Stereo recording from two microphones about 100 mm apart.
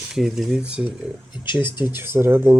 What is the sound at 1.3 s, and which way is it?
Speech, 50° left (ahead or behind).